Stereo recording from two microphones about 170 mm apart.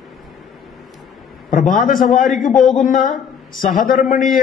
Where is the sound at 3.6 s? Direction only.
55° left (ahead or behind).